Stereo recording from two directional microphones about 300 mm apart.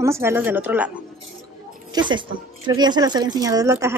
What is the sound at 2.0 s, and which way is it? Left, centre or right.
A woman's voice, centre.